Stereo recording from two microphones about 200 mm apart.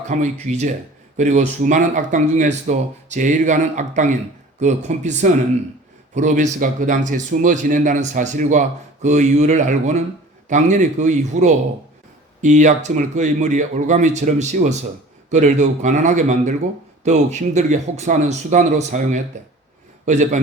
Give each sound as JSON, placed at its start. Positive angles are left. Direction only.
{"t": 0.1, "sound": "speech", "side_deg": -35}